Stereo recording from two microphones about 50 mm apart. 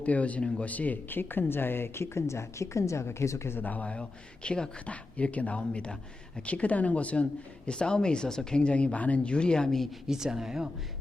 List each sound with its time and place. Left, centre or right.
0.0 s speech: left
1.2 s speech: left
2.1 s speech: left
3.6 s speech: left
10.1 s speech: centre